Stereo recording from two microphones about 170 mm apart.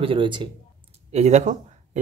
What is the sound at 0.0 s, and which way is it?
Speech, 30° right (ahead or behind).